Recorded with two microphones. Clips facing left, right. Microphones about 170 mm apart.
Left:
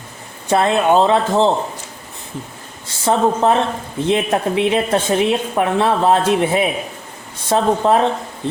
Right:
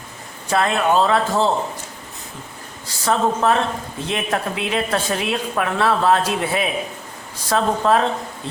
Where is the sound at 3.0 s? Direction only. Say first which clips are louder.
Left 3 dB; 25° left (ahead or behind).